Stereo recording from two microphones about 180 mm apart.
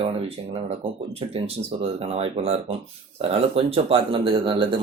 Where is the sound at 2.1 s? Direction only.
35° right (ahead or behind).